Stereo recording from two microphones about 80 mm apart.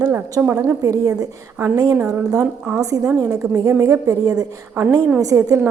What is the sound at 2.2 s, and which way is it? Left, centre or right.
Speech, right.